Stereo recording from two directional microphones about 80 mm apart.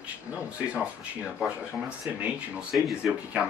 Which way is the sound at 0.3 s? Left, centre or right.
Centre.